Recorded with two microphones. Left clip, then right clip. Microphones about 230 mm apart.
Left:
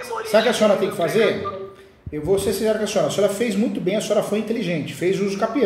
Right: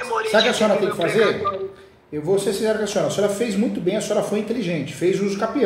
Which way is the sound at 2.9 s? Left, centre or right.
Centre.